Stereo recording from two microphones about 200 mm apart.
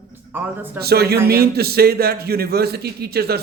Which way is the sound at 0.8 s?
50° right (ahead or behind).